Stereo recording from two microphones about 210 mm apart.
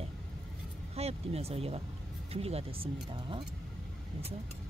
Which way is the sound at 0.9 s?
30° right (ahead or behind).